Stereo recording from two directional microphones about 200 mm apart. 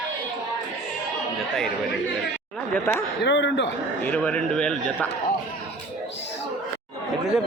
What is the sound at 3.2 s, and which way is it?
Speech, 60° left (ahead or behind).